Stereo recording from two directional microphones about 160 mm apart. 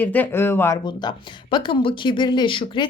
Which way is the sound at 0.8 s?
30° left (ahead or behind).